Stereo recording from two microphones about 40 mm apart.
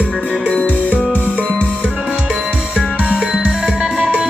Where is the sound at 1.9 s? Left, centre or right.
Right.